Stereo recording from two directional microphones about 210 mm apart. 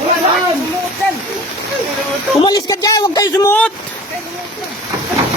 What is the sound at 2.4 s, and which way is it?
Speech, 20° left (ahead or behind).